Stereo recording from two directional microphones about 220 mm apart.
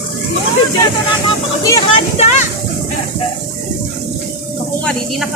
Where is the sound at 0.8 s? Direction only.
15° left (ahead or behind).